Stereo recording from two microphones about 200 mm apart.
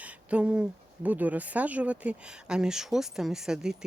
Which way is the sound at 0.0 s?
5° right (ahead or behind).